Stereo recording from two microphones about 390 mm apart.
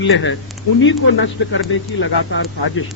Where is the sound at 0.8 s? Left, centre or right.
Left.